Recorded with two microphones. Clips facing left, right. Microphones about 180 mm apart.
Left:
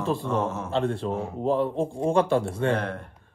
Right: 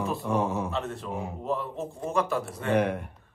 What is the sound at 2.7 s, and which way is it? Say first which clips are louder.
Speech: right 3 dB; 15° right (ahead or behind).